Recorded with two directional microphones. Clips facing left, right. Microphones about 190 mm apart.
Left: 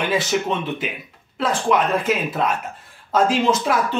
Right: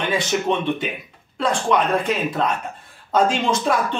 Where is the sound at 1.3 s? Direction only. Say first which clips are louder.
Even; 5° left (ahead or behind).